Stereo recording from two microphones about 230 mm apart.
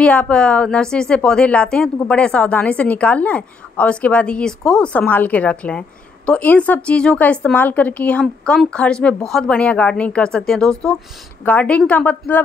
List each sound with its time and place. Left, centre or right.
0.0 s a woman's voice: centre